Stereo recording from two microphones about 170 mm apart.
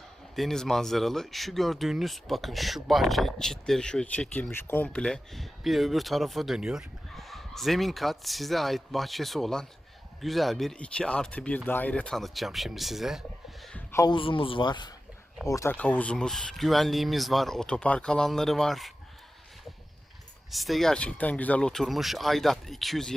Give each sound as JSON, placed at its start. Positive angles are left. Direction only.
{"t": 0.3, "sound": "speech", "side_deg": 0}
{"t": 13.7, "sound": "a sound", "side_deg": 15}
{"t": 14.1, "sound": "a man's voice", "side_deg": 30}
{"t": 20.5, "sound": "speech", "side_deg": 0}